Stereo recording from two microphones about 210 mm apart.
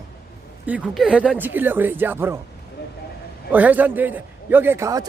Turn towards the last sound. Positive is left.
turn(degrees=-15)  # may be behind; listen again after turning